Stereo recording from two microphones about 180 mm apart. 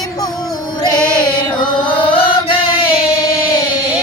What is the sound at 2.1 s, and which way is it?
Music, 30° left (ahead or behind).